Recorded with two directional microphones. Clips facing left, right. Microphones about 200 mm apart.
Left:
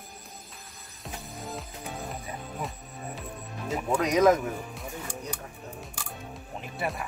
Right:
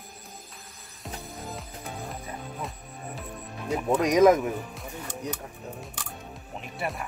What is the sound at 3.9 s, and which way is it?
Speech, 15° right (ahead or behind).